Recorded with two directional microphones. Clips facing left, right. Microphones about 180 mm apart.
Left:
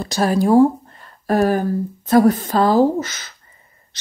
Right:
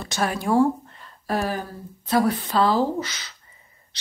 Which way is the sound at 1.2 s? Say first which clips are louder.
Left 9 dB; 50° left (ahead or behind).